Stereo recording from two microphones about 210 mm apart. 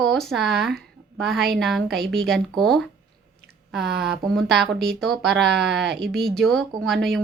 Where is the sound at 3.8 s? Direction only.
50° right (ahead or behind).